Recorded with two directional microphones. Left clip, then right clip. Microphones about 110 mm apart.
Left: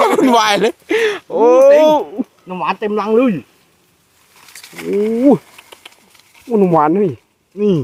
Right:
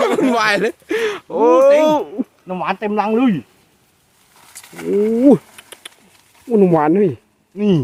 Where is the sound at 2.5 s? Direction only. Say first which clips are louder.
Left 2 dB; 90° right.